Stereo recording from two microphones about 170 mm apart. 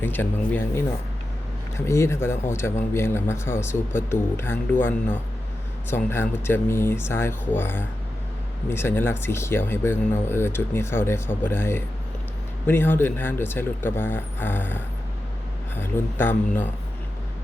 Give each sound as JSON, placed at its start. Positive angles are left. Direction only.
{"t": 0.0, "sound": "speech", "side_deg": 10}
{"t": 1.9, "sound": "speech", "side_deg": 15}